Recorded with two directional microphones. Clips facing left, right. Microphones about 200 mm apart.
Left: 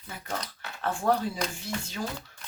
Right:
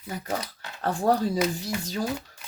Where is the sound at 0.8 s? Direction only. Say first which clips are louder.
Right 3 dB; 35° right (ahead or behind).